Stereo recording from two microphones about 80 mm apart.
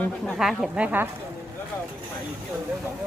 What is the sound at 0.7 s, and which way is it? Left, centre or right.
Speech, right.